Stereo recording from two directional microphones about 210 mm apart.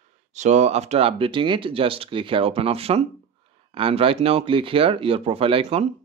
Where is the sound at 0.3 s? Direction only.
35° right (ahead or behind).